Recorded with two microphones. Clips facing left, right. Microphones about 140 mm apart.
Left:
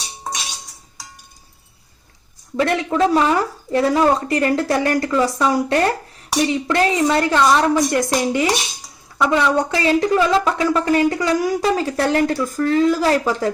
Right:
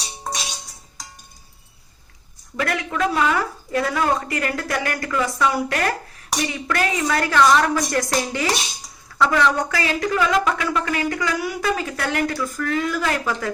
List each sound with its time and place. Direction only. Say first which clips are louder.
2.6 s a woman's voice: left 6 dB; 30° left (ahead or behind)